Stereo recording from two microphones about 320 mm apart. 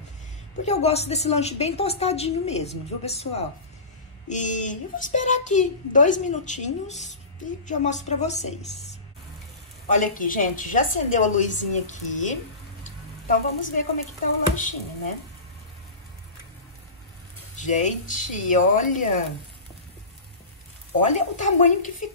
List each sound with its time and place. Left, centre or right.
0.7 s a child's voice: centre
9.9 s a child's voice: left
12.8 s a sound: left
14.5 s a child's voice: left
17.6 s a child's voice: left
21.1 s a child's voice: left